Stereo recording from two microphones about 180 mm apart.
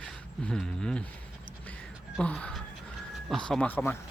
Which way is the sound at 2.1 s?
5° left (ahead or behind).